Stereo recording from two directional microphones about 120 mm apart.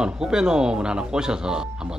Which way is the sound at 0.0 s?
5° right (ahead or behind).